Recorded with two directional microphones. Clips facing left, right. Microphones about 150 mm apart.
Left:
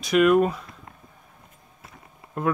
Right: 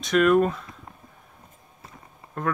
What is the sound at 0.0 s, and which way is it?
Speech, 5° left (ahead or behind).